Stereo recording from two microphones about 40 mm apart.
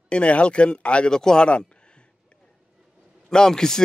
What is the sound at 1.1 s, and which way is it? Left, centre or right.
Speech, centre.